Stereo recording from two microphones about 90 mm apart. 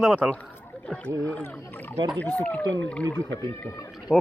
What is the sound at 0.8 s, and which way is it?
Speech, 10° left (ahead or behind).